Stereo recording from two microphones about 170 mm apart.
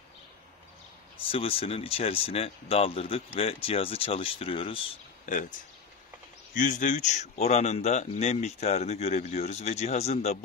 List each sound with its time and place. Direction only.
1.2 s speech: 35° left (ahead or behind)
6.5 s speech: 50° left (ahead or behind)